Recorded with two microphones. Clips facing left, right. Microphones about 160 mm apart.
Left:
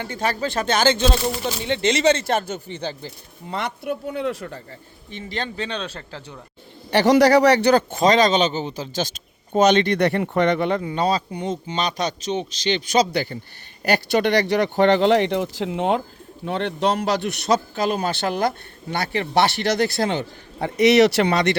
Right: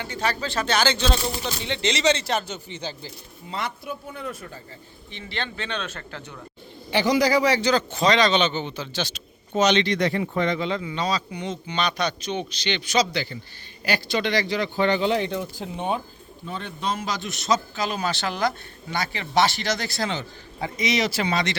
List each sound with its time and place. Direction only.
0.0 s a man's voice: 50° left (ahead or behind); by 4.6 s 70° left (ahead or behind)
5.1 s speech: 40° left (ahead or behind)
6.9 s a man's voice: 70° left (ahead or behind); by 16.0 s 90° left
16.5 s a man's voice: 70° left (ahead or behind)